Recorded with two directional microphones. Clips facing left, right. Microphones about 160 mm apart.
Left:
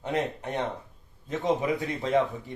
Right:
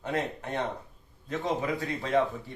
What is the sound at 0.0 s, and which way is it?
Speech, 20° left (ahead or behind).